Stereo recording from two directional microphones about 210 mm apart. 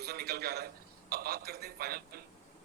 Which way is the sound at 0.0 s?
50° right (ahead or behind).